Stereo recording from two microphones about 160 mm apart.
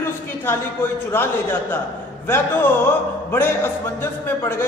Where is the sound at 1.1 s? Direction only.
15° left (ahead or behind).